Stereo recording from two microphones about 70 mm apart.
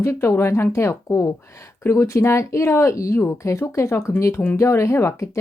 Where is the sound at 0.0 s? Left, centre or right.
Left.